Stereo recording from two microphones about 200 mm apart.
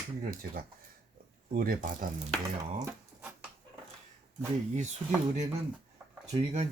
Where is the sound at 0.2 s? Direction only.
45° right (ahead or behind).